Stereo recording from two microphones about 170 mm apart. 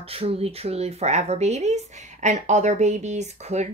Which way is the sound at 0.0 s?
35° right (ahead or behind).